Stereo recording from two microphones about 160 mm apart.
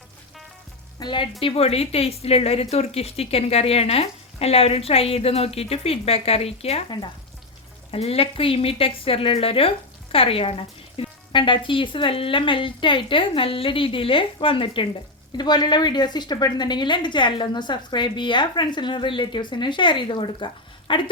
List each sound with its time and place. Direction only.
0.9 s a woman's voice: 30° left (ahead or behind)
7.9 s a woman's voice: 40° left (ahead or behind)